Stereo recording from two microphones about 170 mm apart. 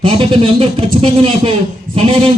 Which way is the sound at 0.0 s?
30° right (ahead or behind).